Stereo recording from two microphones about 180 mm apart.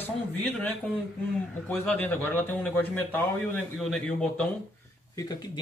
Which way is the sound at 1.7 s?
10° left (ahead or behind).